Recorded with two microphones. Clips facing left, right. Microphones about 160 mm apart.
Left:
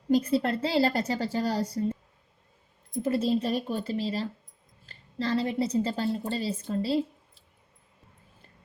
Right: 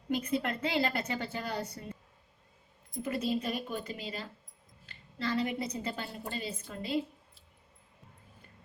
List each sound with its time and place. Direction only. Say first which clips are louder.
0.1 s a woman's voice: left 8 dB; 30° left (ahead or behind)
3.0 s a woman's voice: left 7 dB; 35° left (ahead or behind)